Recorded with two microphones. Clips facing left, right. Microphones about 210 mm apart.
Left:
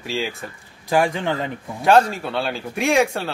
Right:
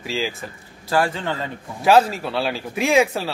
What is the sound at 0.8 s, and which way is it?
Speech, 15° left (ahead or behind).